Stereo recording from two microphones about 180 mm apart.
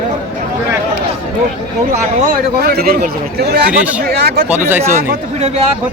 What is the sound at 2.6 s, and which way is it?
Speech, 55° right (ahead or behind).